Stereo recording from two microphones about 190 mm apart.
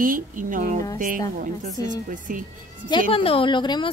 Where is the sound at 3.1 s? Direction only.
30° left (ahead or behind).